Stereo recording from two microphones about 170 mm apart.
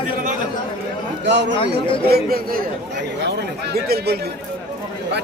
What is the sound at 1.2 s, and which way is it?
Speech, 90° right.